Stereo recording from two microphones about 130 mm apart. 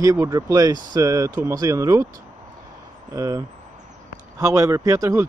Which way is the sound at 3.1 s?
25° right (ahead or behind).